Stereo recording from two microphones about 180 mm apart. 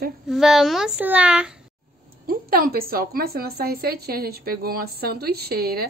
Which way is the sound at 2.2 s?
55° right (ahead or behind).